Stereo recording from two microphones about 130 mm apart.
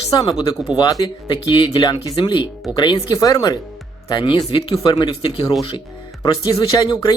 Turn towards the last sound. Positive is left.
turn(degrees=30)  # may be behind; listen again after turning